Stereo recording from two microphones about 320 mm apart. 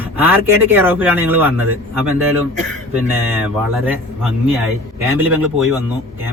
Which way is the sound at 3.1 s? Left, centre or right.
Centre.